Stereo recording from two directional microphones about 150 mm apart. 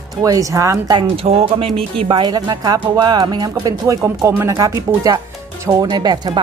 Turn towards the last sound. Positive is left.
turn(degrees=-30)  # may be behind; listen again after turning